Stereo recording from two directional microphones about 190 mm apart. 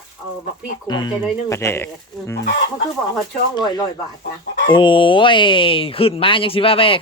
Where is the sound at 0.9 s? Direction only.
20° left (ahead or behind).